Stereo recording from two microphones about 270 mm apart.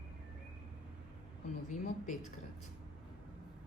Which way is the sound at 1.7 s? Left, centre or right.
Left.